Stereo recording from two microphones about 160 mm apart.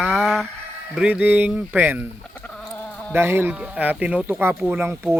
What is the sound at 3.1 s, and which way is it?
Speech, 15° right (ahead or behind).